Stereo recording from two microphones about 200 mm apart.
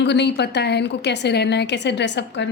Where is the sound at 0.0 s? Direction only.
60° left (ahead or behind).